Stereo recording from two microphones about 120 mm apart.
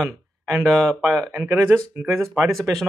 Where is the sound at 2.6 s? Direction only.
Centre (ahead or behind).